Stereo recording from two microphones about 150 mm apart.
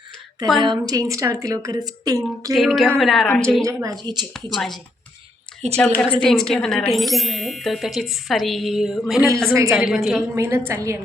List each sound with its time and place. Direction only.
0.6 s a woman's voice: 25° right (ahead or behind)
2.5 s speech: centre (ahead or behind)
3.6 s a woman's voice: 20° right (ahead or behind)
4.4 s a woman's voice: centre (ahead or behind)
10.3 s a woman's voice: 20° right (ahead or behind)